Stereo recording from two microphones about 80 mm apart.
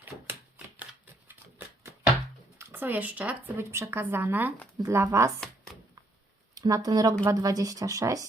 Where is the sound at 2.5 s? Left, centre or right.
Right.